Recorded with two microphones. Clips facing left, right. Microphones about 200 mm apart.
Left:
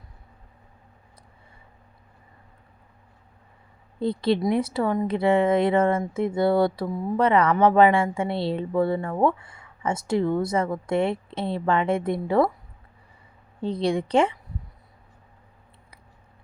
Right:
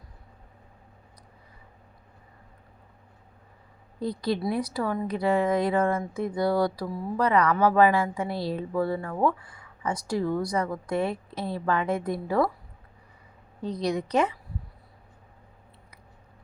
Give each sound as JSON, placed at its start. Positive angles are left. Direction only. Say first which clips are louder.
{"t": 4.0, "sound": "a woman's voice", "louder": "left 5 dB", "side_deg": 25}
{"t": 13.6, "sound": "a woman's voice", "louder": "left 4 dB", "side_deg": 30}